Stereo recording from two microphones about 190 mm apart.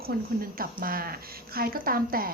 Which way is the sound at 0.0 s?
50° right (ahead or behind).